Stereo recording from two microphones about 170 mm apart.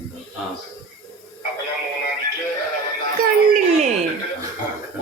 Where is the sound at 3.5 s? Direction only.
45° right (ahead or behind).